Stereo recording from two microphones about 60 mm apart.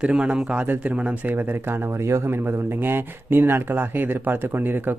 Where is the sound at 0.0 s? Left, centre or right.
Centre.